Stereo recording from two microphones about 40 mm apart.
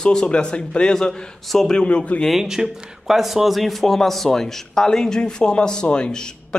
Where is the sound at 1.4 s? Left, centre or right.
Centre.